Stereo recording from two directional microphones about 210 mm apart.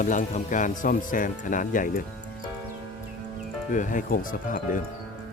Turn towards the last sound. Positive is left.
turn(degrees=40)  # may be behind; listen again after turning